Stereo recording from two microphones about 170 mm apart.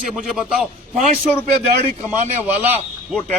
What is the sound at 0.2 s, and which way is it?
Speech, 5° right (ahead or behind).